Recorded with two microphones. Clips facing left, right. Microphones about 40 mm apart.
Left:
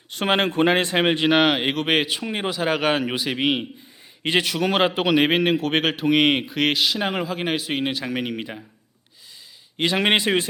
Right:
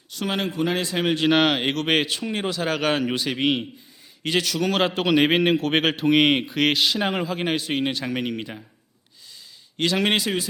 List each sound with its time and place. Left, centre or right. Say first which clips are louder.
0.1 s speech: left 5 dB; left
1.3 s speech: left 1 dB; centre
4.2 s a man's voice: left 2 dB; left; by 8.6 s centre
9.7 s a man's voice: left 2 dB; centre